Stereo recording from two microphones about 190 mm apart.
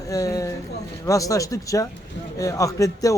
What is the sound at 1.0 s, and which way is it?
Speech, 15° left (ahead or behind).